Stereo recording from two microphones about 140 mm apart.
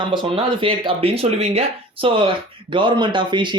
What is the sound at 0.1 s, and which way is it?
Speech, 35° right (ahead or behind).